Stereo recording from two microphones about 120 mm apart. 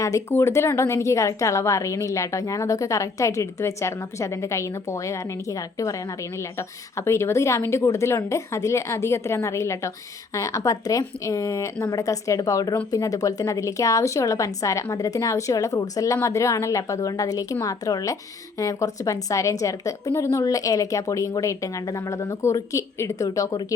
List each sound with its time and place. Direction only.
0.0 s a woman's voice: 25° left (ahead or behind)